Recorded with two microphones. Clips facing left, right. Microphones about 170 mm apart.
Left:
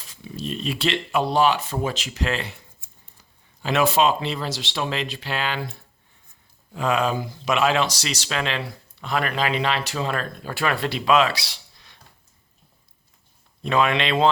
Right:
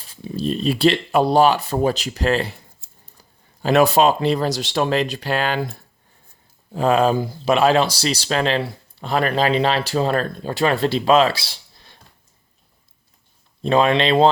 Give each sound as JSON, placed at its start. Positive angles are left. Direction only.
{"t": 0.1, "sound": "speech", "side_deg": -35}
{"t": 6.7, "sound": "speech", "side_deg": -35}
{"t": 10.5, "sound": "speech", "side_deg": -25}
{"t": 13.6, "sound": "speech", "side_deg": -30}